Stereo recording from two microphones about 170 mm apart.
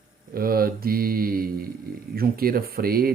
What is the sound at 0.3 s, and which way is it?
Speech, 60° right (ahead or behind).